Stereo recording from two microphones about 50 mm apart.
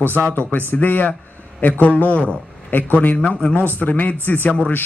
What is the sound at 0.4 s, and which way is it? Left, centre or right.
A man's voice, left.